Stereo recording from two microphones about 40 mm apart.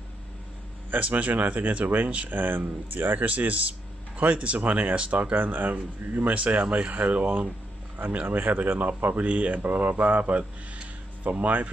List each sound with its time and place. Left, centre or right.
0.9 s speech: right
2.2 s speech: right
3.3 s speech: right
5.3 s speech: right